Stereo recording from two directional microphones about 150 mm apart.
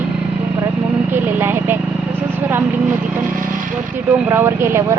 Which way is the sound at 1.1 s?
15° right (ahead or behind).